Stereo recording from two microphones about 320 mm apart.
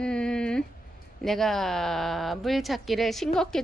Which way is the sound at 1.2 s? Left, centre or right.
Centre.